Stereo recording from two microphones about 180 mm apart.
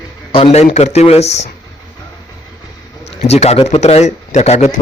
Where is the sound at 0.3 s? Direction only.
35° left (ahead or behind).